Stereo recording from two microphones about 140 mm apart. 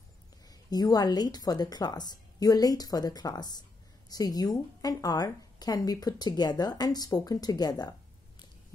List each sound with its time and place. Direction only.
0.7 s a woman's voice: 25° left (ahead or behind)